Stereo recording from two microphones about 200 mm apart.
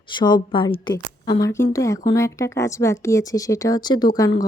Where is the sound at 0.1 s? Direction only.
20° left (ahead or behind).